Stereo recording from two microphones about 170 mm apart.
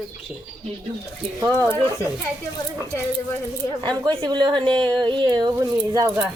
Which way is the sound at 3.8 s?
25° right (ahead or behind).